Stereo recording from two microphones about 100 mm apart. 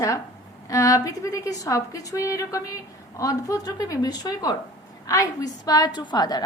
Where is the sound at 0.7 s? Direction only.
35° left (ahead or behind).